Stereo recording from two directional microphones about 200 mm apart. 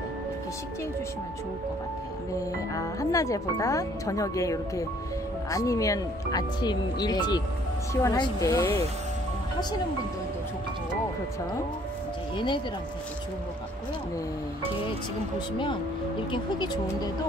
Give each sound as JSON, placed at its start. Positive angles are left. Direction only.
{"t": 2.7, "sound": "speech", "side_deg": 15}
{"t": 12.4, "sound": "speech", "side_deg": 25}
{"t": 16.3, "sound": "speech", "side_deg": 20}